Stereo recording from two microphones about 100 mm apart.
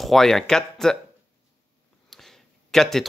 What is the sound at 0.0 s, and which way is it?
Speech, 5° left (ahead or behind).